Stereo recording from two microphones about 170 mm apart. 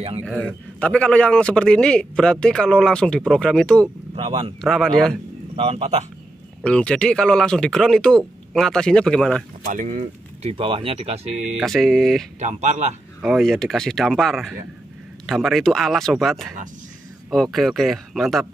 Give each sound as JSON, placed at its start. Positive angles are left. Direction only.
{"t": 0.2, "sound": "a man's voice", "side_deg": 5}
{"t": 4.1, "sound": "speech", "side_deg": -35}
{"t": 4.6, "sound": "a man's voice", "side_deg": 0}
{"t": 5.6, "sound": "speech", "side_deg": -35}
{"t": 6.6, "sound": "a man's voice", "side_deg": 5}
{"t": 9.7, "sound": "speech", "side_deg": -50}
{"t": 10.5, "sound": "speech", "side_deg": -30}
{"t": 11.5, "sound": "a man's voice", "side_deg": 0}
{"t": 12.4, "sound": "speech", "side_deg": -45}
{"t": 13.2, "sound": "a man's voice", "side_deg": 0}